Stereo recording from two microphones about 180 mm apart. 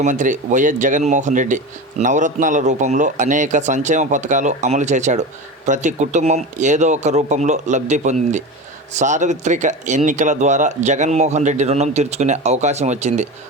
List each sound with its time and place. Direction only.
0.0 s speech: 45° right (ahead or behind)